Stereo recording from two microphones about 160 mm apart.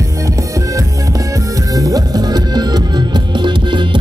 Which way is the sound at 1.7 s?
20° right (ahead or behind).